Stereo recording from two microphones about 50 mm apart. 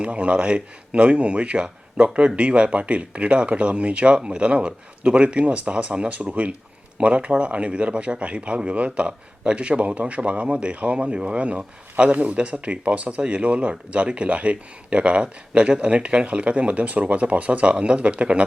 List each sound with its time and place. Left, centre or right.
0.0 s speech: right